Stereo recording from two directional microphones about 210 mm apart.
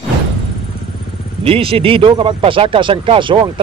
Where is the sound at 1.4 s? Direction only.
25° right (ahead or behind).